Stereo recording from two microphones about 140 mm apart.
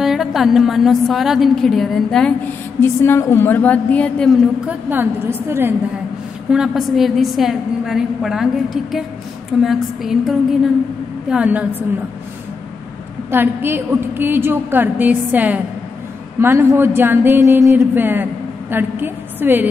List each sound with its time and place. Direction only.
0.0 s a woman's voice: centre (ahead or behind)
2.8 s a woman's voice: 20° left (ahead or behind)
4.6 s a woman's voice: 15° right (ahead or behind)
6.5 s a woman's voice: 5° right (ahead or behind)
13.3 s a woman's voice: 15° right (ahead or behind)